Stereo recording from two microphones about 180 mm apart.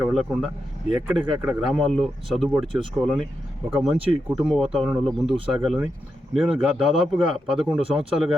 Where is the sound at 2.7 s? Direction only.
30° right (ahead or behind).